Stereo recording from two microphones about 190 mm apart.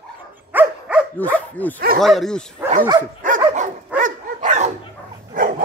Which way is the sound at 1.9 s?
Centre (ahead or behind).